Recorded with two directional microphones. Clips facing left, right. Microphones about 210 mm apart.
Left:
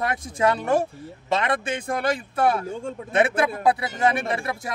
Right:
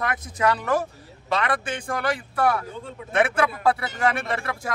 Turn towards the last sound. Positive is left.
turn(degrees=20)  # may be behind; listen again after turning